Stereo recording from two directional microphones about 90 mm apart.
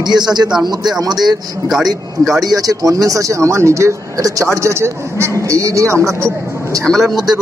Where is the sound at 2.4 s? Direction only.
40° right (ahead or behind).